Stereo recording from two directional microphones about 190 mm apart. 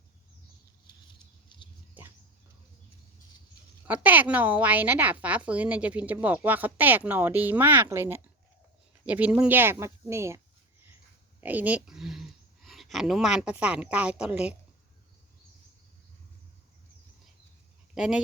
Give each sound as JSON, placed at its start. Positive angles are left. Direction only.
{"t": 1.0, "sound": "mouse", "side_deg": 25}
{"t": 3.8, "sound": "a woman's voice", "side_deg": -10}
{"t": 17.9, "sound": "speech", "side_deg": -5}